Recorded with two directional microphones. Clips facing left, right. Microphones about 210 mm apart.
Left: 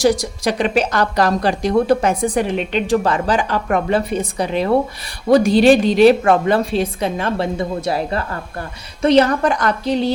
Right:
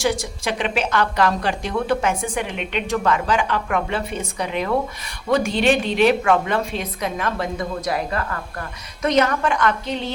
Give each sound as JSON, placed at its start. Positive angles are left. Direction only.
{"t": 0.0, "sound": "a woman's voice", "side_deg": 35}